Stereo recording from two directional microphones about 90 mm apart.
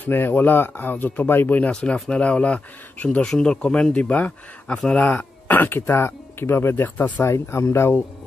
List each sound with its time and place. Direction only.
0.0 s speech: 25° left (ahead or behind)